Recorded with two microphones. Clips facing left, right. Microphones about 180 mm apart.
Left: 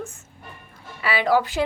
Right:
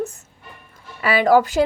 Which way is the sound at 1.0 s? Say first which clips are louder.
Right 5 dB; 45° right (ahead or behind).